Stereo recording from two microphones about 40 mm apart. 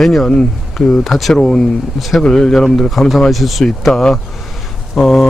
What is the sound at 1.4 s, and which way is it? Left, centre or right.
Speech, centre.